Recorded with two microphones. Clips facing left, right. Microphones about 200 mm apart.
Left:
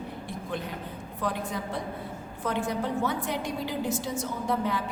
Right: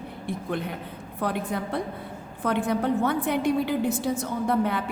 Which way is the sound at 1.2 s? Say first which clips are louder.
Right 4 dB; 60° right (ahead or behind).